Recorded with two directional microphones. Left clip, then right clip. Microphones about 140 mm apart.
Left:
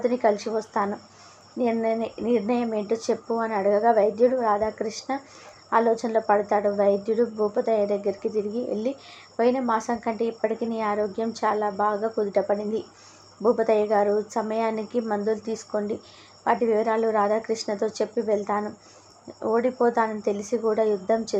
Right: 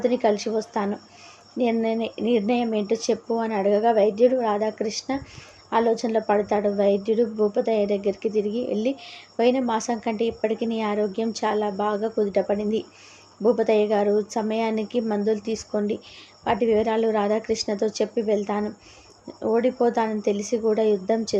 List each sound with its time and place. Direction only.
0.0 s speech: 15° right (ahead or behind)